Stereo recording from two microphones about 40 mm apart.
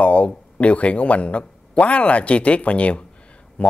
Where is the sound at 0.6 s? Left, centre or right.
Left.